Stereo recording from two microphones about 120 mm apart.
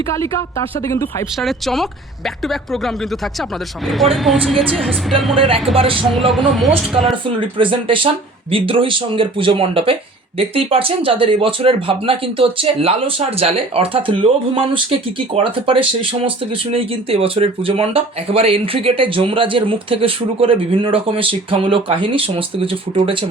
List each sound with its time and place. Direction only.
0.1 s a woman's voice: 25° left (ahead or behind)
1.4 s a woman's voice: centre (ahead or behind)
5.7 s speech: 50° right (ahead or behind)
6.3 s a woman's voice: centre (ahead or behind)
7.3 s speech: 45° right (ahead or behind)